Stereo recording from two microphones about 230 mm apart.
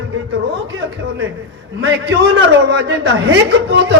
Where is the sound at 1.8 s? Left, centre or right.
Right.